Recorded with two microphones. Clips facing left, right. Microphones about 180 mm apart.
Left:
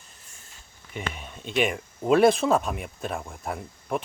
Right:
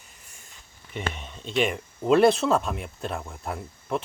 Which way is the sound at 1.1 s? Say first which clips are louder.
Left 1 dB; 10° left (ahead or behind).